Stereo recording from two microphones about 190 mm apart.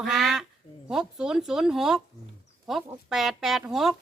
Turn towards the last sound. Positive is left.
turn(degrees=0)  # may be behind; listen again after turning